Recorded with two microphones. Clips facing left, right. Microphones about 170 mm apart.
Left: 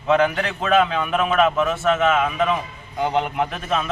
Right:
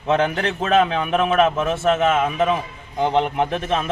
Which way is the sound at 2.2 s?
25° right (ahead or behind).